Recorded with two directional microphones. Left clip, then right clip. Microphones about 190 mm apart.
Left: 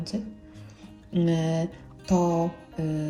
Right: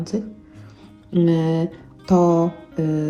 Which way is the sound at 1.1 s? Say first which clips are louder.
Right 7 dB; centre (ahead or behind).